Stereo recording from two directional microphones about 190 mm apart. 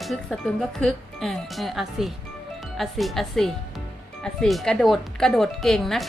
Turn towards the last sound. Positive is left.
turn(degrees=0)  # may be behind; listen again after turning